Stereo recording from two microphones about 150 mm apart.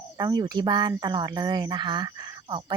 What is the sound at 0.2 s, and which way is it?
Speech, 25° right (ahead or behind).